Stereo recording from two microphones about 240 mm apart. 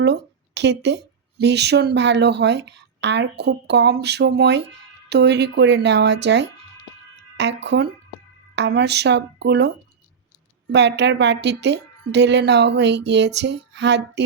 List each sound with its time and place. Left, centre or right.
0.0 s a woman's voice: right